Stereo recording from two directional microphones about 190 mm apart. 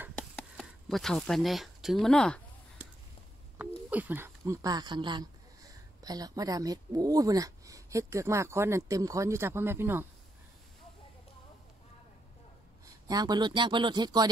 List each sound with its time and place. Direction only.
0.4 s speech: centre (ahead or behind)
3.5 s speech: 10° right (ahead or behind)
12.8 s speech: 20° right (ahead or behind)